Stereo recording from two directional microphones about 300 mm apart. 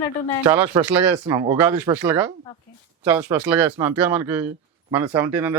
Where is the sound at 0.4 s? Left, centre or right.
Centre.